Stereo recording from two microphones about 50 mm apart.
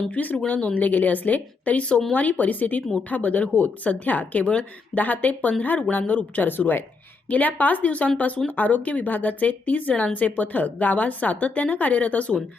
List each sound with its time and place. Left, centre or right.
0.1 s a woman's voice: left